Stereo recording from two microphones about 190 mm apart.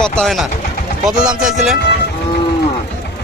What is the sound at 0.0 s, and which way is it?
A man's voice, centre (ahead or behind).